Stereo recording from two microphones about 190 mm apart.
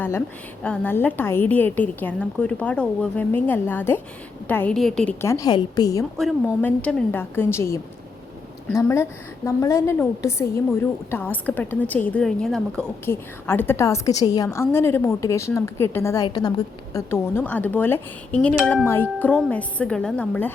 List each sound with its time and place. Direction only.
0.6 s a woman's voice: 10° left (ahead or behind)
5.2 s a woman's voice: 15° left (ahead or behind)